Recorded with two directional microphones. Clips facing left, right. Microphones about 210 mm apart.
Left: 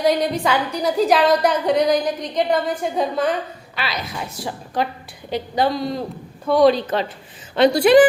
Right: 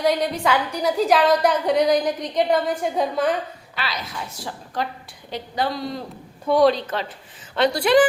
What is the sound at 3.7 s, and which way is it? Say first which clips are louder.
A woman's voice: left 3 dB; 15° left (ahead or behind).